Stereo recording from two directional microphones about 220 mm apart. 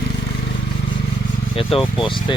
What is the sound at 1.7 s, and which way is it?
Speech, 25° left (ahead or behind).